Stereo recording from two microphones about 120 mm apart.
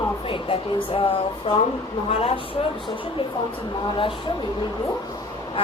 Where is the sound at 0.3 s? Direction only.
50° left (ahead or behind).